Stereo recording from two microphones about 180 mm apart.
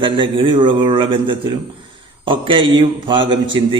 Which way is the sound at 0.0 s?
30° right (ahead or behind).